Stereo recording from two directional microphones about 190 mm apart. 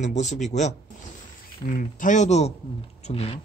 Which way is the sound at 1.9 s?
40° left (ahead or behind).